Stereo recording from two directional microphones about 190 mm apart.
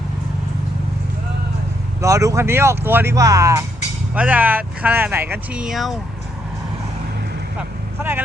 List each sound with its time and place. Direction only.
2.0 s speech: 15° right (ahead or behind); by 6.0 s centre (ahead or behind)